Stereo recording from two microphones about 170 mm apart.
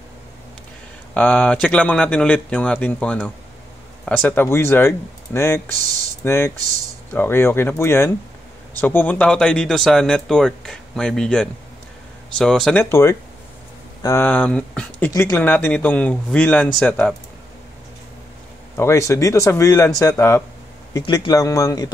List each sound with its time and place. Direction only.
1.1 s speech: 5° left (ahead or behind)
14.0 s speech: 10° left (ahead or behind)
18.8 s speech: 15° left (ahead or behind)
20.9 s speech: 25° left (ahead or behind)